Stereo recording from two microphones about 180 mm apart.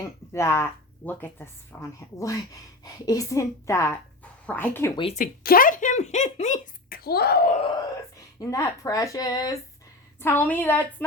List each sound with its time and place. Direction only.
0.3 s speech: 15° left (ahead or behind)
5.1 s speech: 50° left (ahead or behind)
7.0 s speech: 60° left (ahead or behind)
8.4 s speech: 20° left (ahead or behind)